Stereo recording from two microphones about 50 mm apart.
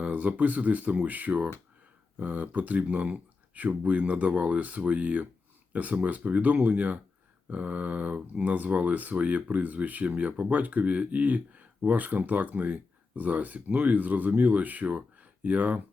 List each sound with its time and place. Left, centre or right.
0.0 s speech: right